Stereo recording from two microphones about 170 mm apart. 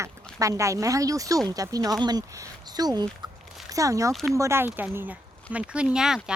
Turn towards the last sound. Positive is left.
turn(degrees=-5)  # may be behind; listen again after turning